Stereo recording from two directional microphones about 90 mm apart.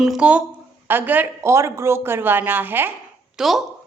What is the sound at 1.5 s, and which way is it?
Speech, 35° right (ahead or behind).